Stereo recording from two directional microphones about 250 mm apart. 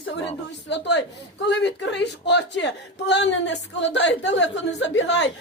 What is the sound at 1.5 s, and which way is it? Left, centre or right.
Speech, left.